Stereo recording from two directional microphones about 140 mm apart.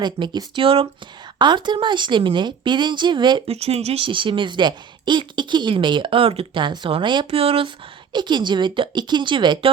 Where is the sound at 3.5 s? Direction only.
45° right (ahead or behind).